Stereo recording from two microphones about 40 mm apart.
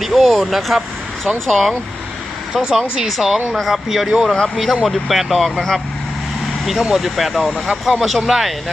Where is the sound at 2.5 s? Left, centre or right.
Centre.